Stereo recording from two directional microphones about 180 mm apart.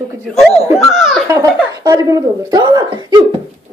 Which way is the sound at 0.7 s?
Centre (ahead or behind).